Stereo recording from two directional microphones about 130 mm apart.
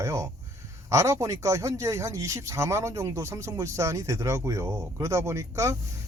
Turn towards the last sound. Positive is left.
turn(degrees=-20)  # may be behind; listen again after turning